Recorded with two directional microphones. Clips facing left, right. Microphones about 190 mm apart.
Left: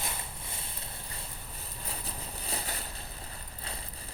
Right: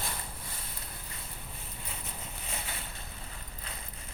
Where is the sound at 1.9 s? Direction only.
35° left (ahead or behind).